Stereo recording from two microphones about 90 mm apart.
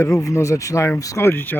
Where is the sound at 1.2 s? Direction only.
25° left (ahead or behind).